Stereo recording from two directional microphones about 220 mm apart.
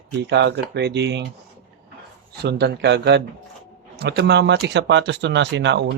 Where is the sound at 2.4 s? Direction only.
50° right (ahead or behind).